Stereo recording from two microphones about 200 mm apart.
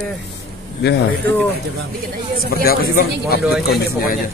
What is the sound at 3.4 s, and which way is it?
Speech, centre (ahead or behind).